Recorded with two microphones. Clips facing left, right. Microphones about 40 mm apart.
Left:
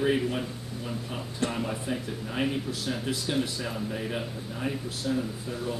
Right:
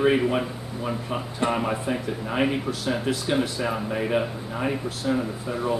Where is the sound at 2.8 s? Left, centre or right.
Centre.